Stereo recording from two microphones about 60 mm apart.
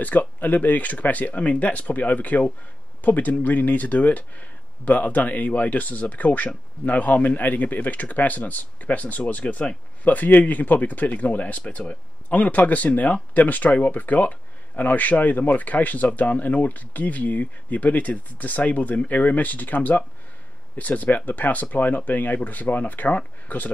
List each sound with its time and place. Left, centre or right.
0.0 s speech: left